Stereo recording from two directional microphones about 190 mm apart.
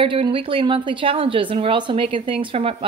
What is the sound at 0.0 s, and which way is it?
Speech, 25° right (ahead or behind).